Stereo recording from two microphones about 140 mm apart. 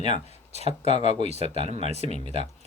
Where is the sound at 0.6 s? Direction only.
45° right (ahead or behind).